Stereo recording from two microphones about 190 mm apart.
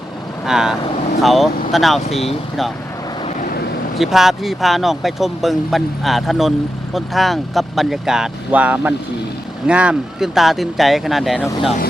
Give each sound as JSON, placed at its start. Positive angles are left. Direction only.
{"t": 0.4, "sound": "speech", "side_deg": -5}
{"t": 3.2, "sound": "vehicle", "side_deg": 45}
{"t": 3.9, "sound": "speech", "side_deg": 0}